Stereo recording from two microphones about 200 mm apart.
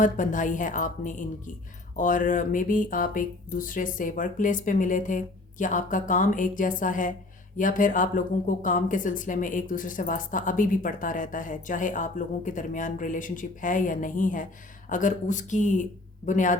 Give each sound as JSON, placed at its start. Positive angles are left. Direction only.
{"t": 0.0, "sound": "speech", "side_deg": 40}